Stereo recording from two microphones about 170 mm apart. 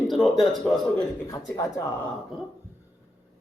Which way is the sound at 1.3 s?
20° left (ahead or behind).